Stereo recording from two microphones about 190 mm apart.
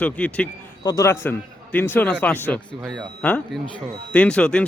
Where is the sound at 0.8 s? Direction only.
20° left (ahead or behind).